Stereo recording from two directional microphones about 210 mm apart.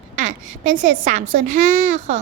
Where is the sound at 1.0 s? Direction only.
35° right (ahead or behind).